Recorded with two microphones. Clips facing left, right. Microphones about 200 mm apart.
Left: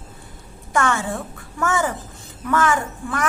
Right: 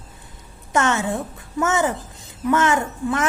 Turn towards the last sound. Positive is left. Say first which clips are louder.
# right 3 dB
turn(degrees=-20)  # may be behind; listen again after turning